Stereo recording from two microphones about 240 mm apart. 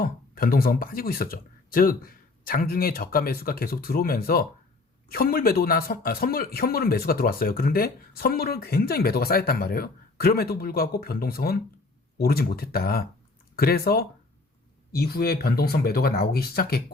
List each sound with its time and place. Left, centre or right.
0.0 s speech: left